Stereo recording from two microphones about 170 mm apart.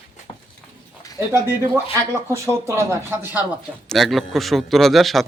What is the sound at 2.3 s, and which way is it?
Speech, 15° right (ahead or behind).